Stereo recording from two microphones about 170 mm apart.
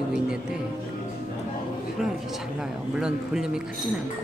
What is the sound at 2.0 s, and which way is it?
A woman's voice, centre (ahead or behind).